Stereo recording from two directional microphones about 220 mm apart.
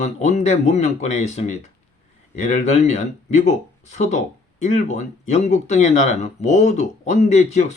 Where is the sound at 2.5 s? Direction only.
30° left (ahead or behind).